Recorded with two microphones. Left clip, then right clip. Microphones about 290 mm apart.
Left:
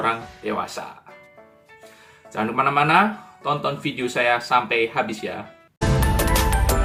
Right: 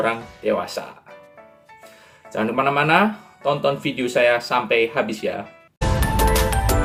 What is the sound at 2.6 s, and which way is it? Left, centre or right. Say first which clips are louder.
Speech: even; right.